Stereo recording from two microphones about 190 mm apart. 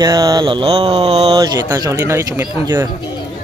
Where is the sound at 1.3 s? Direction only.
20° right (ahead or behind).